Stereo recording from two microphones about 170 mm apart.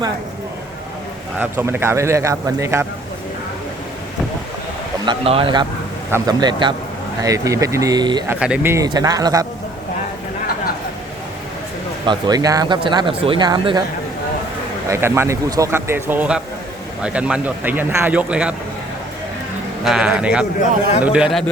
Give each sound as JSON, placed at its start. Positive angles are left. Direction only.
{"t": 1.4, "sound": "speech", "side_deg": -10}
{"t": 5.0, "sound": "speech", "side_deg": -35}
{"t": 6.1, "sound": "speech", "side_deg": -20}
{"t": 8.3, "sound": "speech", "side_deg": -5}
{"t": 12.0, "sound": "speech", "side_deg": -20}
{"t": 14.8, "sound": "speech", "side_deg": -15}
{"t": 19.8, "sound": "speech", "side_deg": -5}